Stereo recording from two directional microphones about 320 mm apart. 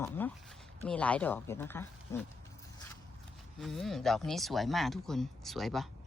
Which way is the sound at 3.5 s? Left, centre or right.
Centre.